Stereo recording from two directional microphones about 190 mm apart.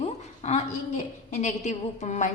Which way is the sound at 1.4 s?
35° left (ahead or behind).